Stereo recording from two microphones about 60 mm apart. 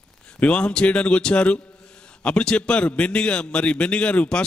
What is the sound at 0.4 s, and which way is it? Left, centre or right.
A man's voice, left.